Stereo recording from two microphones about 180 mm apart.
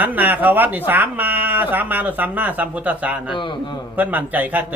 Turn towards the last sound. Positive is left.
turn(degrees=-10)  # may be behind; listen again after turning